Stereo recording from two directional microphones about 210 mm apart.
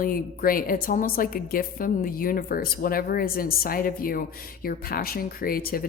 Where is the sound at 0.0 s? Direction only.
45° left (ahead or behind).